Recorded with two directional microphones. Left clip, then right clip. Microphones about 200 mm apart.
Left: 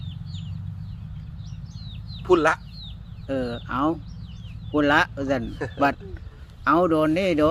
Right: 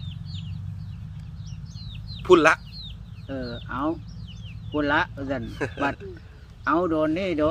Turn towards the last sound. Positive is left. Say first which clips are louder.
# left 3 dB
turn(degrees=40)  # may be behind; listen again after turning